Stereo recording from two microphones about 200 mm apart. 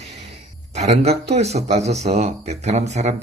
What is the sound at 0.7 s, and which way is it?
Speech, 35° right (ahead or behind).